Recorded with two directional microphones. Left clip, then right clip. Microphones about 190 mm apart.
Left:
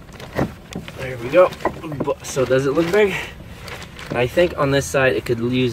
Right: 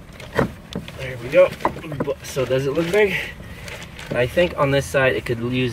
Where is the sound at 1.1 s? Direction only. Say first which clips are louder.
Left 1 dB; 20° left (ahead or behind).